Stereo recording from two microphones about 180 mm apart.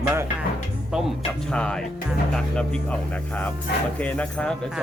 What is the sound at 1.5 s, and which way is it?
Speech, 5° left (ahead or behind).